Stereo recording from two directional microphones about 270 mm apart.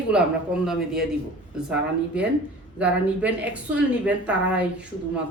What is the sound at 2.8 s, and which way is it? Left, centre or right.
A woman's voice, centre.